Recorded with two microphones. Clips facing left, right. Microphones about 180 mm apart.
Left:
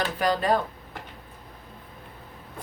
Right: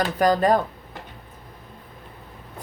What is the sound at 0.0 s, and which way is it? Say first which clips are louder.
Speech: right 6 dB; 45° right (ahead or behind).